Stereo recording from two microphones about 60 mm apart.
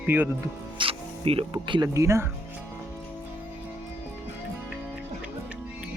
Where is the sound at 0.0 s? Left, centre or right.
Right.